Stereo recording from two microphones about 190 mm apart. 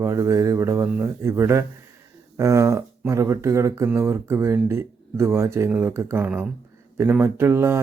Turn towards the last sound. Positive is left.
turn(degrees=-15)  # may be behind; listen again after turning